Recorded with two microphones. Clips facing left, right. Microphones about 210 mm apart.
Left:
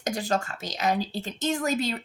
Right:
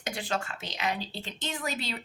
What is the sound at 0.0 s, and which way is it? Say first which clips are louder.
A woman's voice: left 6 dB; 40° left (ahead or behind).